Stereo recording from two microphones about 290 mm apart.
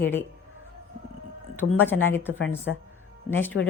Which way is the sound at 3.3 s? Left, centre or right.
Centre.